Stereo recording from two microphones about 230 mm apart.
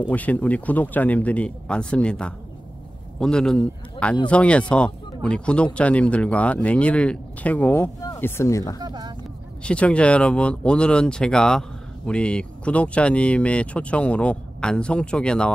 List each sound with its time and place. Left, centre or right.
0.1 s speech: centre
8.7 s a sound: centre
9.6 s speech: centre